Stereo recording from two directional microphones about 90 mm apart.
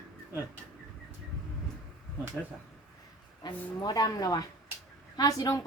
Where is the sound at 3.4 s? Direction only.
50° left (ahead or behind).